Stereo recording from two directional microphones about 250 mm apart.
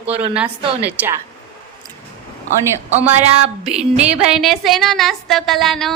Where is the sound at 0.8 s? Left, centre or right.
Centre.